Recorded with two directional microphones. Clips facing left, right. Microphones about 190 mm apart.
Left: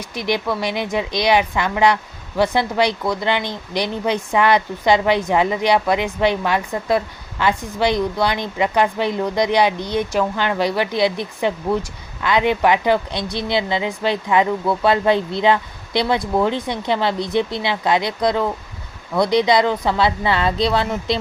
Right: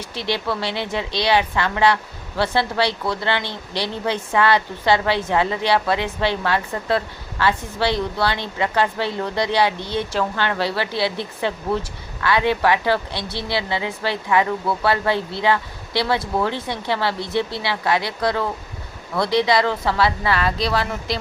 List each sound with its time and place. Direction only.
0.1 s a woman's voice: 15° left (ahead or behind)